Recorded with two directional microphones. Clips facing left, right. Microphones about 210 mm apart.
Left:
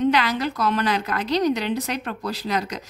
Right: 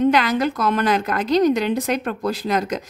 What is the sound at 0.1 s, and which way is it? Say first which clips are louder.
A woman's voice: right 4 dB; 50° right (ahead or behind).